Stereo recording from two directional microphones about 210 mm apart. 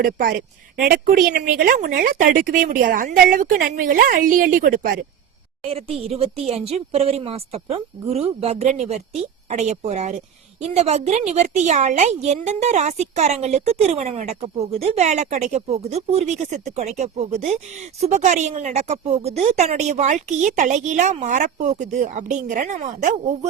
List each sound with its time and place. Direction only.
0.0 s speech: 40° right (ahead or behind)
5.6 s speech: 30° right (ahead or behind)